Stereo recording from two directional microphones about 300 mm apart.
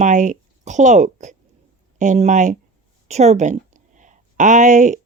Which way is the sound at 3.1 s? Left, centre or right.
Right.